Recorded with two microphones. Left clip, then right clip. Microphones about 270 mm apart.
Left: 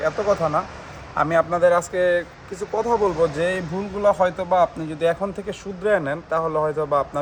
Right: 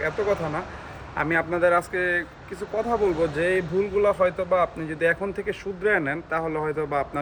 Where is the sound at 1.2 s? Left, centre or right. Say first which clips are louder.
Left 5 dB; centre.